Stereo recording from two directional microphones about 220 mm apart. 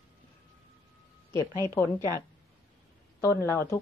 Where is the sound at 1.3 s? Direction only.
15° left (ahead or behind).